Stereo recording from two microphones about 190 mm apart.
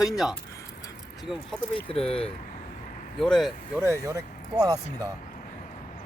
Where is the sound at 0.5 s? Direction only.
20° left (ahead or behind).